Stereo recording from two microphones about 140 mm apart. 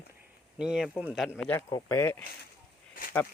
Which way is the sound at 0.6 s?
5° right (ahead or behind).